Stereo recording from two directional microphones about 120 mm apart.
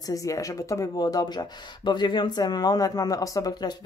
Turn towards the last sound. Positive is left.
turn(degrees=35)  # may be behind; listen again after turning